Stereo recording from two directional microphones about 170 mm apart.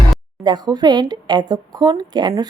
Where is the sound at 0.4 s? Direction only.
25° right (ahead or behind).